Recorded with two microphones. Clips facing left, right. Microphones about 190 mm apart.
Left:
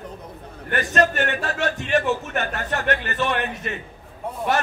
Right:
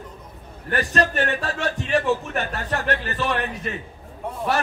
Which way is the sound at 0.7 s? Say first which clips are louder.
Left 1 dB; 35° right (ahead or behind).